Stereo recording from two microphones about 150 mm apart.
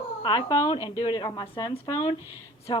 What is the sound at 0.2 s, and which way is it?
A woman's voice, 30° left (ahead or behind).